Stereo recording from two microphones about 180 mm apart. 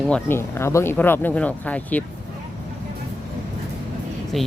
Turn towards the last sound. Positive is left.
turn(degrees=0)  # may be behind; listen again after turning